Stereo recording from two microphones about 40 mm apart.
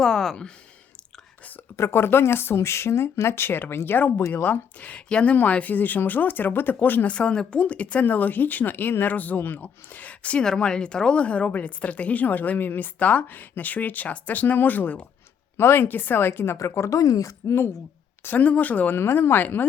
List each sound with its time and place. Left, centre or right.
0.0 s speech: centre
1.9 s speech: left
6.7 s speech: left
7.1 s a woman's voice: left
8.0 s speech: left
10.4 s a woman's voice: centre
11.2 s a woman's voice: left
15.5 s speech: left
17.4 s speech: left
18.3 s a woman's voice: left
18.9 s speech: left
19.4 s speech: left